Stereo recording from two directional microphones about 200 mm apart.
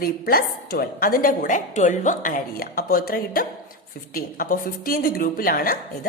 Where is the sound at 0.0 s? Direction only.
50° left (ahead or behind).